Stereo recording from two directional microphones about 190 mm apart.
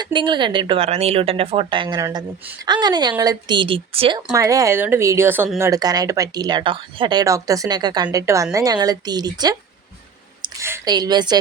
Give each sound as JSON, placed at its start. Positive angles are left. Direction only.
{"t": 0.0, "sound": "a woman's voice", "side_deg": -25}
{"t": 4.3, "sound": "a woman's voice", "side_deg": -15}